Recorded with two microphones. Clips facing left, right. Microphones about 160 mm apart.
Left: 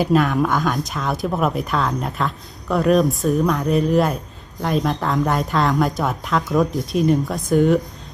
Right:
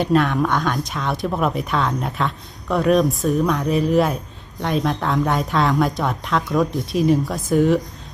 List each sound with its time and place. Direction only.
0.0 s speech: centre (ahead or behind)